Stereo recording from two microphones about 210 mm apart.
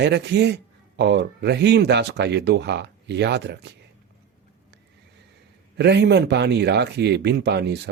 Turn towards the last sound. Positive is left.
turn(degrees=-55)  # may be behind; listen again after turning